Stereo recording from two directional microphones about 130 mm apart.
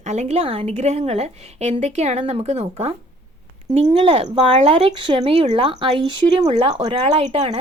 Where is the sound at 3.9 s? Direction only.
50° right (ahead or behind).